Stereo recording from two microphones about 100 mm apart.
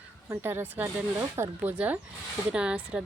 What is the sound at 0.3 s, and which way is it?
Speech, 20° right (ahead or behind).